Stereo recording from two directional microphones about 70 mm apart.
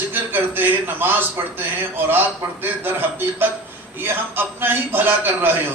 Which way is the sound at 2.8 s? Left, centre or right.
Right.